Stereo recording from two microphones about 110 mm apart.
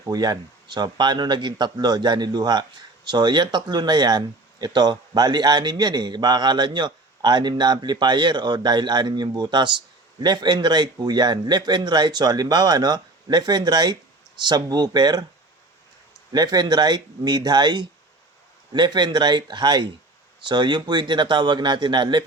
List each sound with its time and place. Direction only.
0.0 s a man's voice: 35° right (ahead or behind)
16.3 s a man's voice: 40° right (ahead or behind)